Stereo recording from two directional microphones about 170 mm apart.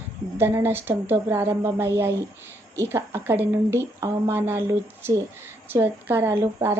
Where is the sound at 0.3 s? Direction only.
15° right (ahead or behind).